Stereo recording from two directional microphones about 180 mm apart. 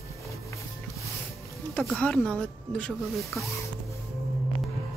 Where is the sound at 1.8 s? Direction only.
5° left (ahead or behind).